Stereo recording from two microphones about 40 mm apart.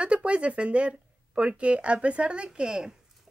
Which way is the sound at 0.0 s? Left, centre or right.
Right.